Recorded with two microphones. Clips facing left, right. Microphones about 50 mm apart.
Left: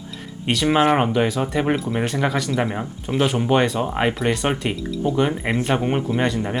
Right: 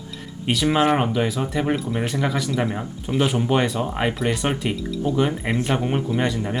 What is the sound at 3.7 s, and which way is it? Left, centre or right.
Speech, centre.